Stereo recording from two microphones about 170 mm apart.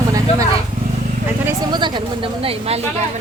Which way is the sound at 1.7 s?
25° right (ahead or behind).